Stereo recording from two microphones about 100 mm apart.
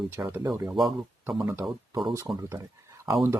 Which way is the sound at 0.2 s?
25° right (ahead or behind).